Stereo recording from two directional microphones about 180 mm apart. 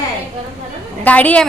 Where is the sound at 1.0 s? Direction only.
10° left (ahead or behind).